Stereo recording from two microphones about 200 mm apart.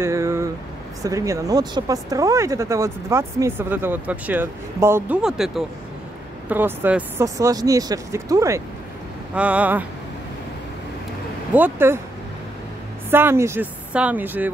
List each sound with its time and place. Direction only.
0.0 s a sound: 15° right (ahead or behind)
1.0 s speech: 15° right (ahead or behind)
11.5 s speech: 10° right (ahead or behind)
13.1 s speech: 10° right (ahead or behind)